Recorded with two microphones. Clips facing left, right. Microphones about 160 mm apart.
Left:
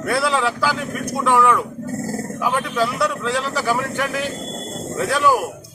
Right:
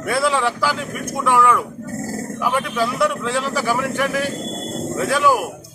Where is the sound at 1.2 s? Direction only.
5° right (ahead or behind).